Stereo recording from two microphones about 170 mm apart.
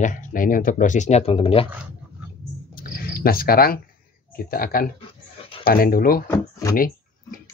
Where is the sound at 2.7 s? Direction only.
60° left (ahead or behind).